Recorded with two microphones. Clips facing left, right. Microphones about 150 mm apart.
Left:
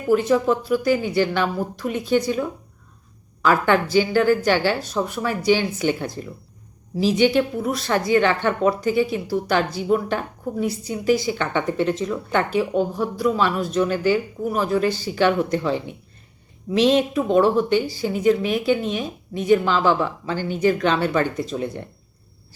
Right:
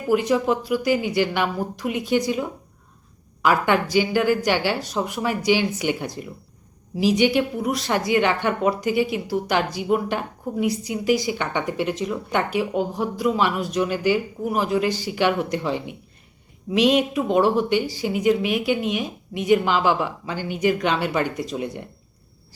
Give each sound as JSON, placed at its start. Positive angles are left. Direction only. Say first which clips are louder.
{"t": 0.1, "sound": "a woman's voice", "louder": "left 2 dB", "side_deg": -15}